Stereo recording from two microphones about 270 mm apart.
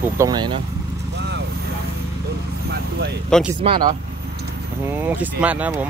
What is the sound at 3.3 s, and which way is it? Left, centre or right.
Speech, centre.